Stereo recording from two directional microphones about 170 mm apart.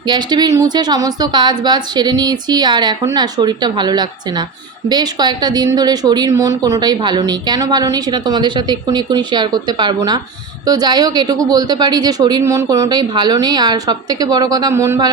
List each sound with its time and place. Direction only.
0.1 s a woman's voice: 25° right (ahead or behind)